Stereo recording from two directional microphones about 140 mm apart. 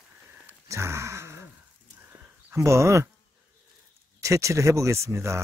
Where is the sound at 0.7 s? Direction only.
20° right (ahead or behind).